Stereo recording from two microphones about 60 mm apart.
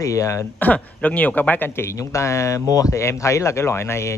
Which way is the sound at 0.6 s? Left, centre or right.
Left.